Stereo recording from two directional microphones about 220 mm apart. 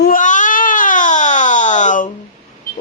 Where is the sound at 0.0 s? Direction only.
35° left (ahead or behind).